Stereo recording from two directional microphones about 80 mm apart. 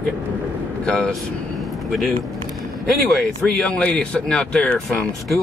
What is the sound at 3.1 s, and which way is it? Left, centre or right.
Speech, centre.